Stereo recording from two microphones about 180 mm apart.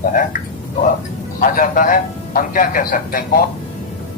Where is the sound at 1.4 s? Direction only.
50° left (ahead or behind).